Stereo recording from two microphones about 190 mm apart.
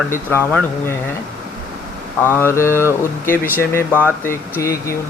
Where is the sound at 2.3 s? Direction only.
15° left (ahead or behind).